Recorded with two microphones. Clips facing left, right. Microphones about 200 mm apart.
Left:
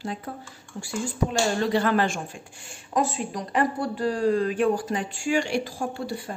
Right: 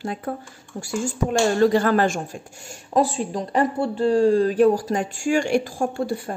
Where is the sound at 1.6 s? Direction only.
45° right (ahead or behind).